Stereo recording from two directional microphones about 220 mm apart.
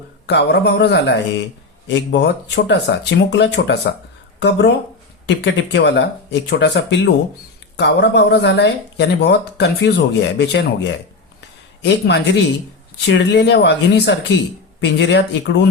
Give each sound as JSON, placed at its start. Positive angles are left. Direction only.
{"t": 0.3, "sound": "speech", "side_deg": 50}